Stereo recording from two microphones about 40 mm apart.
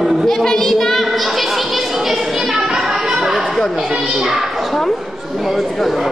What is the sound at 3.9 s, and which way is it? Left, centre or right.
Speech, centre.